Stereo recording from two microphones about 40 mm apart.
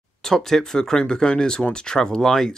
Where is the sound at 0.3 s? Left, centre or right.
Centre.